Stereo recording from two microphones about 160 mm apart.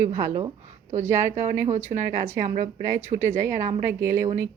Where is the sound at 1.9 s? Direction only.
55° right (ahead or behind).